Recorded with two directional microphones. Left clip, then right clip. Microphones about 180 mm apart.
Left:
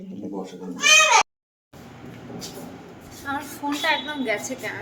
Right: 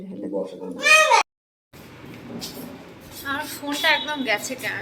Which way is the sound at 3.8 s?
Centre (ahead or behind).